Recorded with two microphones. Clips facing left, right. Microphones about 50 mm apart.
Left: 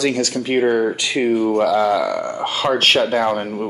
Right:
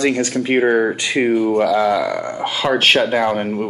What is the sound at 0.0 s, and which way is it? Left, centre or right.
Speech, right.